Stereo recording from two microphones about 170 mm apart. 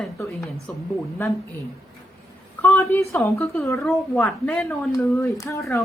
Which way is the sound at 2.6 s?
15° left (ahead or behind).